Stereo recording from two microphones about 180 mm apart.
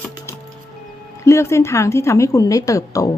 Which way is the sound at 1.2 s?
15° left (ahead or behind).